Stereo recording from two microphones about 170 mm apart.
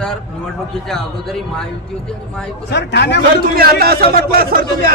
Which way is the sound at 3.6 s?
60° right (ahead or behind).